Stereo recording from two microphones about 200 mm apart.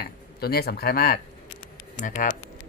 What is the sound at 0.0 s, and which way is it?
Speech, 50° left (ahead or behind).